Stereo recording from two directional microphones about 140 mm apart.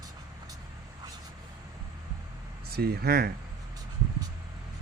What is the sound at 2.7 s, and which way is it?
Speech, 90° right.